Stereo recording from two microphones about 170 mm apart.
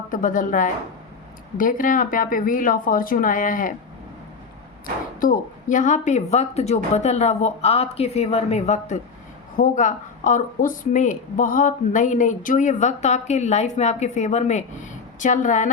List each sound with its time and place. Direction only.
0.1 s speech: 50° left (ahead or behind)
5.2 s speech: 50° left (ahead or behind)